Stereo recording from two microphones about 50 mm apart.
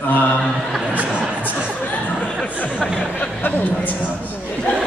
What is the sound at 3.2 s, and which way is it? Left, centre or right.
Speech, left.